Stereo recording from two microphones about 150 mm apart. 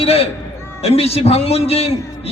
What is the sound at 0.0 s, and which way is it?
A man's voice, 40° left (ahead or behind).